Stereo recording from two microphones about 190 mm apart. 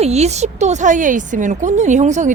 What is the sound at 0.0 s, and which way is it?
Speech, 35° right (ahead or behind).